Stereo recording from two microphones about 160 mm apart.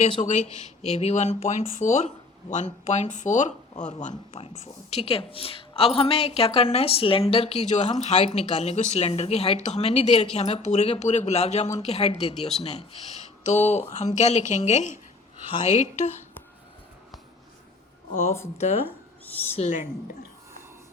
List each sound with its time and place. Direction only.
0.2 s speech: 45° left (ahead or behind)
18.1 s speech: 50° left (ahead or behind)
19.5 s speech: 50° left (ahead or behind)